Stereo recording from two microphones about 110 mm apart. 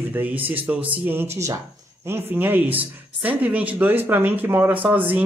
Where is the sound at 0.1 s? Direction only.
15° right (ahead or behind).